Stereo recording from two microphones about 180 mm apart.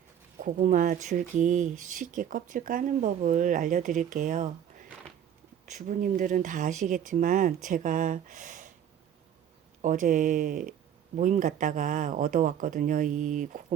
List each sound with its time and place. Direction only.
0.3 s speech: 45° right (ahead or behind)
5.6 s speech: 45° right (ahead or behind)
9.8 s speech: 45° right (ahead or behind)